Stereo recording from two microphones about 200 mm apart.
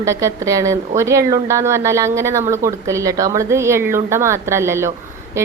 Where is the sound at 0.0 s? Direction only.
15° right (ahead or behind).